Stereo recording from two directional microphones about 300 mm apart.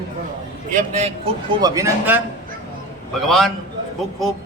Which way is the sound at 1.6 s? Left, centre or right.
Centre.